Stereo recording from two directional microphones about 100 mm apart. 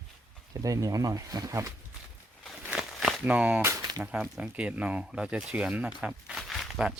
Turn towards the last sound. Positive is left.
turn(degrees=0)  # may be behind; listen again after turning